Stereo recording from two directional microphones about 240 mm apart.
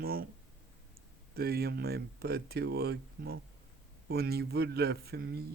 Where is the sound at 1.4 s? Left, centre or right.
Right.